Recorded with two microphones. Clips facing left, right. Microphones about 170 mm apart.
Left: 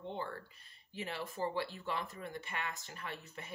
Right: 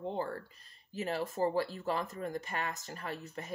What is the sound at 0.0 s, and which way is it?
Speech, 40° right (ahead or behind).